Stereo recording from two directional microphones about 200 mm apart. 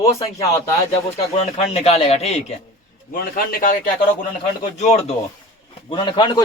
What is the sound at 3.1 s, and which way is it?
Speech, 45° left (ahead or behind).